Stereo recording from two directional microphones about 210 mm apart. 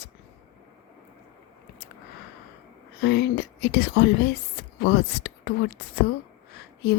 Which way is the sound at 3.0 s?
55° left (ahead or behind).